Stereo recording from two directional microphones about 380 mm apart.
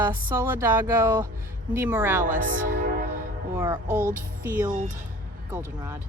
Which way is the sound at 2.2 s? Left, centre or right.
Right.